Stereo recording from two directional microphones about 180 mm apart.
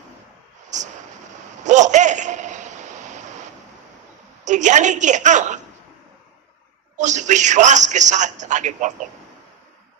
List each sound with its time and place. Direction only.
0.7 s a man's voice: 40° right (ahead or behind)
1.6 s a sound: 40° right (ahead or behind)
4.4 s a woman's voice: 40° right (ahead or behind)
6.9 s a man's voice: 40° right (ahead or behind)